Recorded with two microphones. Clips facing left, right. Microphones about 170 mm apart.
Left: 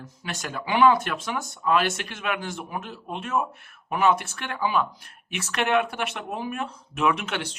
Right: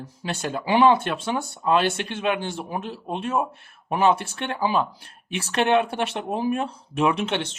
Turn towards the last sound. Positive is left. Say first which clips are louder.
# right 2 dB
turn(degrees=-25)  # may be behind; listen again after turning